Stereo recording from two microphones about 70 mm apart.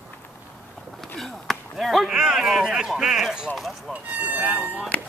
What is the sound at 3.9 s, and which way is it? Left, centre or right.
Speech, right.